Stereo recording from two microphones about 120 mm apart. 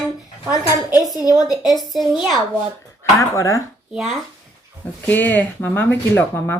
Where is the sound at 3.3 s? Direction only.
25° left (ahead or behind).